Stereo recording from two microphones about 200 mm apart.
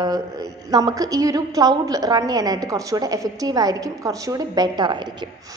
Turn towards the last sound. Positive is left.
turn(degrees=-20)  # may be behind; listen again after turning